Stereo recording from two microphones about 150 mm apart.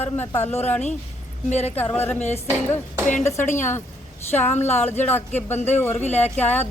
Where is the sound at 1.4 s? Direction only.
45° left (ahead or behind).